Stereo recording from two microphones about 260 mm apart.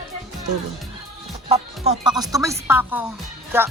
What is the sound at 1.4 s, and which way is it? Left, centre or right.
Speech, right.